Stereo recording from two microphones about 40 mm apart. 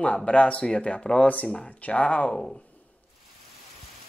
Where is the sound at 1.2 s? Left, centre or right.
Left.